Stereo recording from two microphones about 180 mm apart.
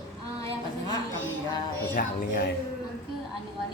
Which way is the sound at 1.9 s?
50° left (ahead or behind).